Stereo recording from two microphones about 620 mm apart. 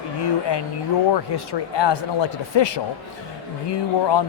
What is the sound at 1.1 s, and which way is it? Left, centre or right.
A man's voice, left.